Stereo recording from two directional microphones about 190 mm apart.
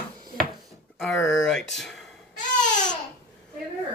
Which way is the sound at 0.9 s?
Centre (ahead or behind).